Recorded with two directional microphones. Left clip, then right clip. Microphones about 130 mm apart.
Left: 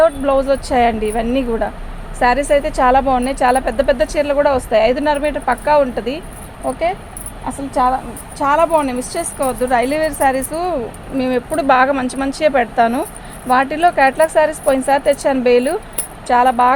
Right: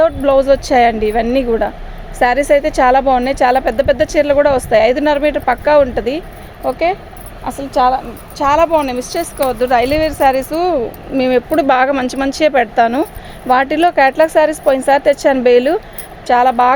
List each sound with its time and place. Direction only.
0.0 s a woman's voice: 90° right
7.7 s a woman's voice: 90° right